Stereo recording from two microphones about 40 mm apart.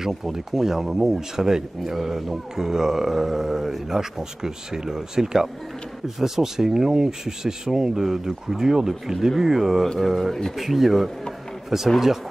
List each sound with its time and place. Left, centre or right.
0.0 s speech: centre